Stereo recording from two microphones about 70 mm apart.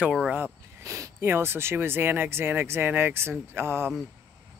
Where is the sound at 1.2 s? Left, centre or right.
Right.